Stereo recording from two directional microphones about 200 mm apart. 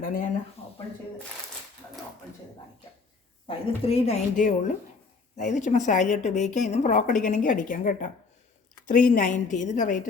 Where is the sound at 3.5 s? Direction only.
30° left (ahead or behind).